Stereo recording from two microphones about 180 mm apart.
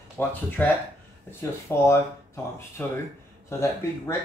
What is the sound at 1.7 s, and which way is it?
Speech, 15° left (ahead or behind).